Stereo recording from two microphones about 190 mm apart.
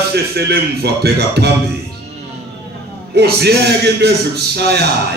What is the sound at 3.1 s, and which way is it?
A man's voice, 60° right (ahead or behind).